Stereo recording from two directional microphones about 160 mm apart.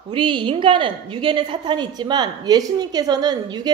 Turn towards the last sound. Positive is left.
turn(degrees=-25)  # may be behind; listen again after turning